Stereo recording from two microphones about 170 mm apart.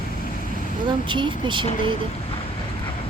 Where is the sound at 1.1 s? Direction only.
30° right (ahead or behind).